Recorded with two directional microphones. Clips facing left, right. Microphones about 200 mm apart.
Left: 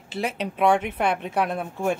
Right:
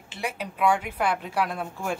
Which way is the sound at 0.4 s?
25° left (ahead or behind).